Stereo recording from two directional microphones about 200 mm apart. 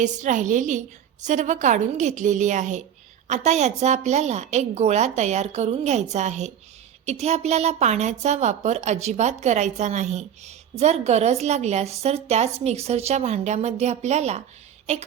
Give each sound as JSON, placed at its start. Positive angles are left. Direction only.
{"t": 0.0, "sound": "a woman's voice", "side_deg": -40}